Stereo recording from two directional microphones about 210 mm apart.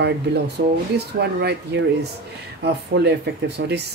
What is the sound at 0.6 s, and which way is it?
Speech, 55° right (ahead or behind).